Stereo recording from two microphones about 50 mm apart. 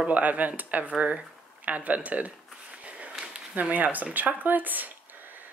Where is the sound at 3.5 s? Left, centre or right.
Right.